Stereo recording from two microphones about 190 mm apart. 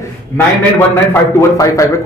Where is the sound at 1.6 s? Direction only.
15° left (ahead or behind).